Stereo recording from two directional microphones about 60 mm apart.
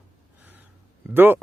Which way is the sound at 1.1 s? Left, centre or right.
Right.